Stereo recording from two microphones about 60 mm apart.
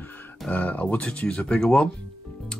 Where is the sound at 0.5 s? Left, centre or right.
Left.